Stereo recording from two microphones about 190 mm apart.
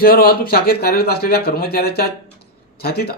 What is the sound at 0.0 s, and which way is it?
Speech, 50° left (ahead or behind).